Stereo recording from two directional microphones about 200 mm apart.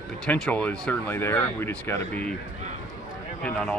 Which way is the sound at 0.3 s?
5° left (ahead or behind).